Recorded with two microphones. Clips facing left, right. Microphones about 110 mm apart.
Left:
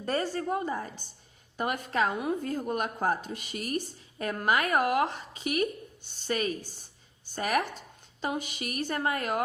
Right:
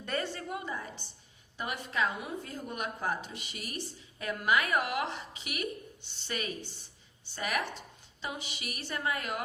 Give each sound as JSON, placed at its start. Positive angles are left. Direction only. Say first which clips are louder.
{"t": 0.0, "sound": "a woman's voice", "louder": "left 6 dB", "side_deg": 35}